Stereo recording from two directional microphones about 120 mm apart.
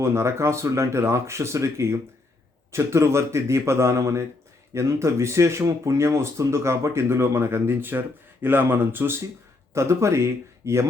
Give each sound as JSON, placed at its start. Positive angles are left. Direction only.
{"t": 0.0, "sound": "speech", "side_deg": -20}